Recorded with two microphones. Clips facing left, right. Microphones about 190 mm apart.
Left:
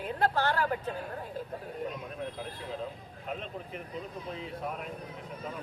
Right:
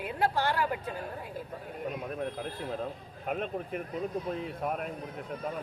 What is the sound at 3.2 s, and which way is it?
Speech, 55° right (ahead or behind).